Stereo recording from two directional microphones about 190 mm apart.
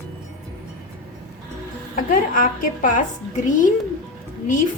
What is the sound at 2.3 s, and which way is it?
Speech, 45° left (ahead or behind).